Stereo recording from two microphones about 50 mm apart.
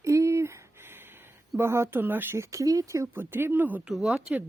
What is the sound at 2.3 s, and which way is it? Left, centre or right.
Speech, right.